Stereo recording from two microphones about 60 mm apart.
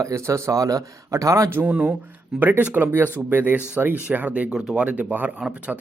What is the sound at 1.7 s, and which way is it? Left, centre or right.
Speech, right.